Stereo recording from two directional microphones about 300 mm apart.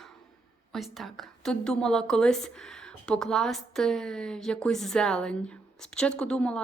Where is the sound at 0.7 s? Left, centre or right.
Centre.